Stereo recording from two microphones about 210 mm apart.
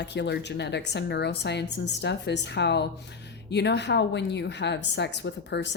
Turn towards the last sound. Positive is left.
turn(degrees=55)  # may be behind; listen again after turning